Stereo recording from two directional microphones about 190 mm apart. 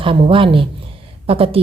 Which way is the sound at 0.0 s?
30° right (ahead or behind).